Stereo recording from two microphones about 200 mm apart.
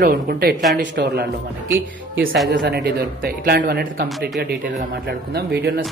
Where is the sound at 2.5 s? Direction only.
50° right (ahead or behind).